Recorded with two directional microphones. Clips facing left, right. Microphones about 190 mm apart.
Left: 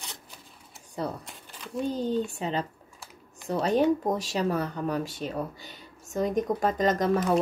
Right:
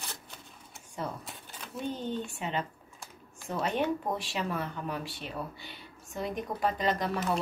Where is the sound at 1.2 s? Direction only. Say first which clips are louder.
Left 1 dB; centre (ahead or behind).